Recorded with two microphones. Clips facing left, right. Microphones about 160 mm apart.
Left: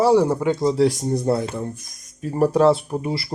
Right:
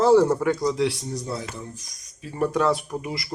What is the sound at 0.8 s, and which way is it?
Speech, 45° left (ahead or behind).